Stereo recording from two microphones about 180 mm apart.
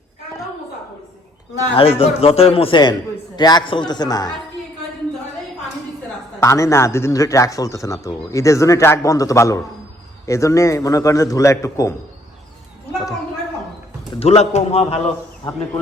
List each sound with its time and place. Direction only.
1.7 s a man's voice: 35° left (ahead or behind)
6.4 s speech: 15° left (ahead or behind)
14.2 s a man's voice: 35° left (ahead or behind)